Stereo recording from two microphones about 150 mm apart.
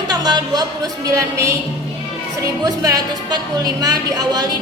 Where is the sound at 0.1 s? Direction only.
30° right (ahead or behind).